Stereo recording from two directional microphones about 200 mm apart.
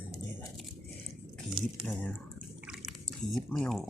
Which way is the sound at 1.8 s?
Centre (ahead or behind).